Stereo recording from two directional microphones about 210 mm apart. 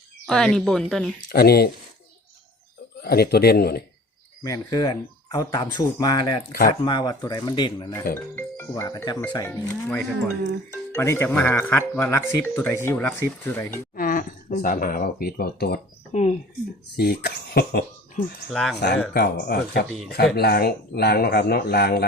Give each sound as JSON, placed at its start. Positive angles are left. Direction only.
{"t": 0.3, "sound": "speech", "side_deg": 5}
{"t": 1.3, "sound": "speech", "side_deg": 50}
{"t": 3.0, "sound": "speech", "side_deg": 50}
{"t": 4.4, "sound": "speech", "side_deg": 15}
{"t": 8.1, "sound": "speech", "side_deg": 10}
{"t": 13.9, "sound": "speech", "side_deg": 40}
{"t": 16.1, "sound": "speech", "side_deg": 35}
{"t": 17.0, "sound": "speech", "side_deg": 50}
{"t": 18.4, "sound": "speech", "side_deg": 0}
{"t": 19.1, "sound": "speech", "side_deg": 50}